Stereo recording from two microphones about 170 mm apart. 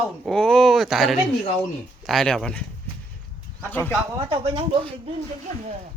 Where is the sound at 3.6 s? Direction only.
10° left (ahead or behind).